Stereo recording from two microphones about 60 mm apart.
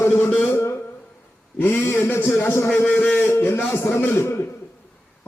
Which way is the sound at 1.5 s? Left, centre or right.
Left.